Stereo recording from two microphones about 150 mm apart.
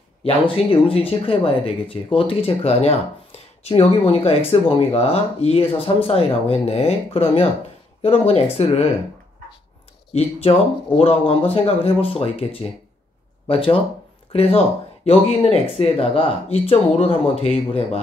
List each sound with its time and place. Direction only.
0.2 s speech: 40° left (ahead or behind)
11.0 s speech: 40° left (ahead or behind)